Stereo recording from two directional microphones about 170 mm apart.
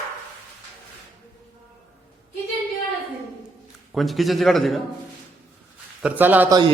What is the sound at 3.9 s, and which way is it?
Speech, centre (ahead or behind).